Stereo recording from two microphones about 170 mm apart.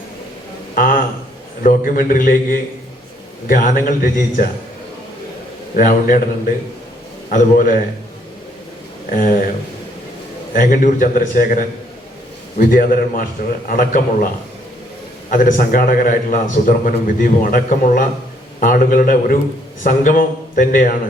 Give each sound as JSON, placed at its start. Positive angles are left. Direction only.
{"t": 0.8, "sound": "a sound", "side_deg": 55}
{"t": 1.6, "sound": "a man's voice", "side_deg": 55}
{"t": 5.7, "sound": "a man's voice", "side_deg": 50}
{"t": 7.3, "sound": "a man's voice", "side_deg": 50}
{"t": 9.0, "sound": "a man's voice", "side_deg": 50}
{"t": 10.5, "sound": "a man's voice", "side_deg": 50}
{"t": 15.3, "sound": "a man's voice", "side_deg": 55}